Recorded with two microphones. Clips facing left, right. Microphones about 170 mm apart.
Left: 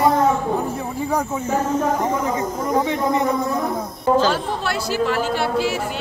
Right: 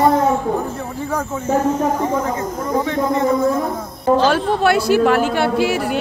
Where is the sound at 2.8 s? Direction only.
15° left (ahead or behind).